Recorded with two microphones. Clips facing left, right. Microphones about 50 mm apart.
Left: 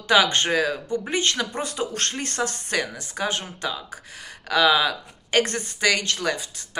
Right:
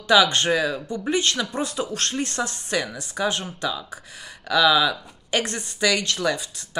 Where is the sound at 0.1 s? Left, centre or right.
Left.